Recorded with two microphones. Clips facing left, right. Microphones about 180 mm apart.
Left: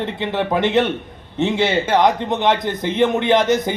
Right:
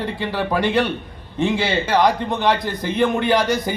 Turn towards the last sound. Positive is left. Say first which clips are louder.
# left 3 dB
turn(degrees=20)  # may be behind; listen again after turning